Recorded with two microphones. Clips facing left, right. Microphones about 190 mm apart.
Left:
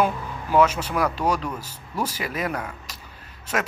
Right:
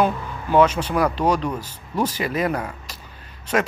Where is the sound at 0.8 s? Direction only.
25° right (ahead or behind).